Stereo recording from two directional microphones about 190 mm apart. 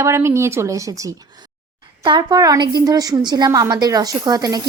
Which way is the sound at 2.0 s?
20° right (ahead or behind).